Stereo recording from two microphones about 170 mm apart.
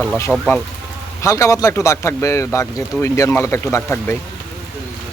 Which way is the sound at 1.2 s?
15° left (ahead or behind).